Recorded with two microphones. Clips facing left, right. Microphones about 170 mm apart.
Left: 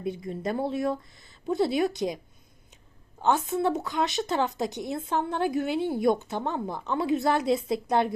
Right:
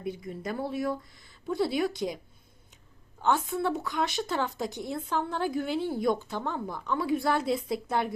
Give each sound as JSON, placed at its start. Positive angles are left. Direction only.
{"t": 0.0, "sound": "speech", "side_deg": 25}
{"t": 3.2, "sound": "speech", "side_deg": 20}